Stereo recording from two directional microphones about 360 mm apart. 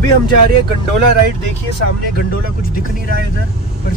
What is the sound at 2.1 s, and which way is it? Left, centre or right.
Speech, left.